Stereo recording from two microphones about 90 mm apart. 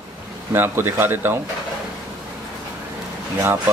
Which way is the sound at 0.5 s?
25° right (ahead or behind).